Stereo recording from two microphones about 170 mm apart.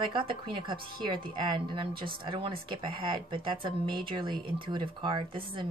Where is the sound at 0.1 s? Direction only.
30° right (ahead or behind).